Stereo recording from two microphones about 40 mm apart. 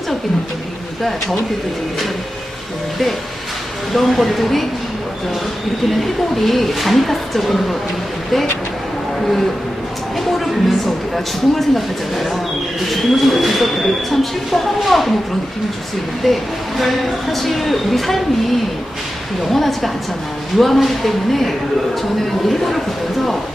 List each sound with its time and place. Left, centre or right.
3.9 s speech: centre
5.9 s speech: centre
10.3 s speech: centre
16.3 s speech: centre
19.4 s speech: centre